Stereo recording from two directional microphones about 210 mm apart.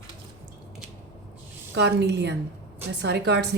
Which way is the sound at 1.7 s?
55° right (ahead or behind).